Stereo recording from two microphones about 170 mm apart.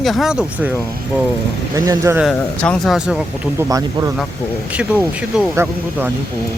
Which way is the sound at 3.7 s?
20° right (ahead or behind).